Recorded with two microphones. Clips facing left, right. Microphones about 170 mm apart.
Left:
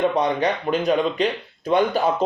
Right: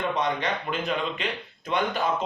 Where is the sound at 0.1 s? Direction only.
35° left (ahead or behind).